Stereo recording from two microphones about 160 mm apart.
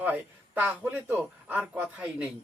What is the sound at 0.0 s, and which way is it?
A man's voice, 10° right (ahead or behind).